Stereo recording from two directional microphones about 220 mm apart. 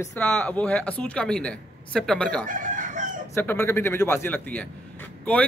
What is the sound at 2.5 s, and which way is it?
Chicken, 35° right (ahead or behind).